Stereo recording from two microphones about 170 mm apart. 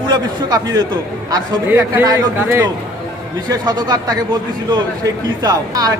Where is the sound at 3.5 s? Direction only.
25° right (ahead or behind).